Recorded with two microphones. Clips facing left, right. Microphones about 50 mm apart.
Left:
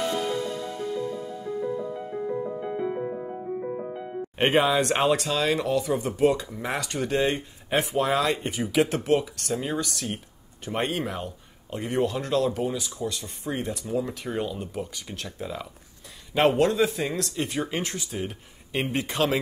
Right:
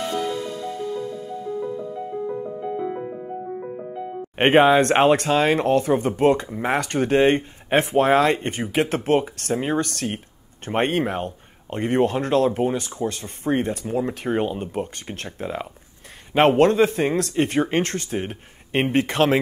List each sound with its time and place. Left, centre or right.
4.4 s speech: right